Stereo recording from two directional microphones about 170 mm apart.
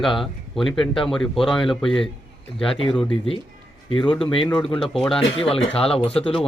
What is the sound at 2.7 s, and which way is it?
Speech, 30° left (ahead or behind).